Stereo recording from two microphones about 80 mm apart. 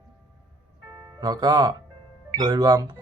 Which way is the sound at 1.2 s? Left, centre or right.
Right.